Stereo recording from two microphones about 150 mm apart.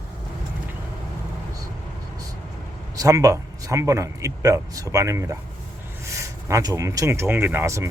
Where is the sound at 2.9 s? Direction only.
25° right (ahead or behind).